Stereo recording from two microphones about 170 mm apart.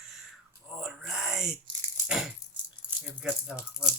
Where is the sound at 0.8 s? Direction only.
Centre (ahead or behind).